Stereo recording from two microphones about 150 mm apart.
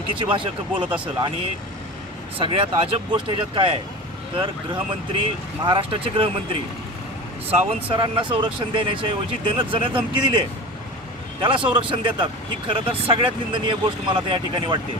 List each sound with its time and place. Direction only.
0.1 s speech: 35° right (ahead or behind)
0.9 s speech: 10° right (ahead or behind)
2.4 s speech: 40° right (ahead or behind)
7.6 s speech: 40° right (ahead or behind)